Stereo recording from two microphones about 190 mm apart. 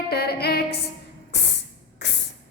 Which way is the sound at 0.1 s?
60° left (ahead or behind).